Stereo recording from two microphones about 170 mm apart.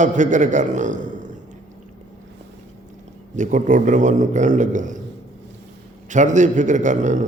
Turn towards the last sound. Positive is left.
turn(degrees=-45)  # may be behind; listen again after turning